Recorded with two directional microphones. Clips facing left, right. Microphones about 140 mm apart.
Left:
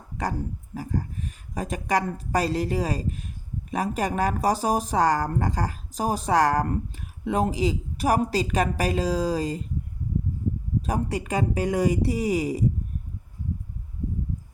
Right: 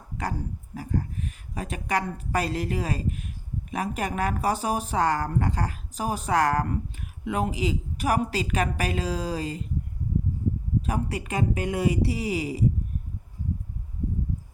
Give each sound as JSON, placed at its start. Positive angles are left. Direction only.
{"t": 0.8, "sound": "speech", "side_deg": 40}
{"t": 10.8, "sound": "speech", "side_deg": 35}